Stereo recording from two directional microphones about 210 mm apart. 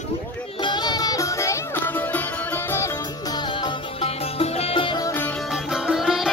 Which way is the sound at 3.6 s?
30° left (ahead or behind).